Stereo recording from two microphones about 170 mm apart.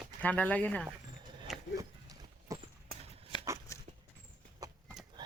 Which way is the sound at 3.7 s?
15° left (ahead or behind).